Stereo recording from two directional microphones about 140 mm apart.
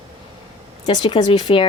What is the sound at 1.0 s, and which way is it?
Speech, 30° left (ahead or behind).